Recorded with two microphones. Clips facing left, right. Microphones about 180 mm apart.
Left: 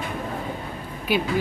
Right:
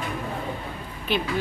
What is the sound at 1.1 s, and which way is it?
Speech, 10° left (ahead or behind).